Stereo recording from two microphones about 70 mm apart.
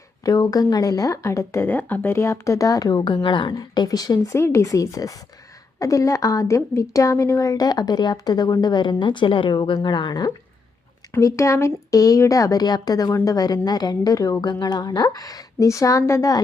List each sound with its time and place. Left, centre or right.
0.2 s speech: left
1.6 s speech: left
2.1 s a woman's voice: left
4.3 s a woman's voice: left
11.2 s a woman's voice: left
14.4 s speech: left